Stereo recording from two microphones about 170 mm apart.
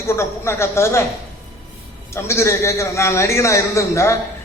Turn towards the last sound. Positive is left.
turn(degrees=15)  # may be behind; listen again after turning